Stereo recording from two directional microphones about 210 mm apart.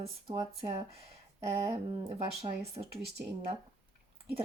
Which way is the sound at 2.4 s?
30° right (ahead or behind).